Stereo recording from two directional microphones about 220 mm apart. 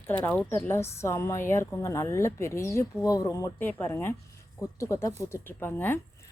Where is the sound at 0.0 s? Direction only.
10° left (ahead or behind).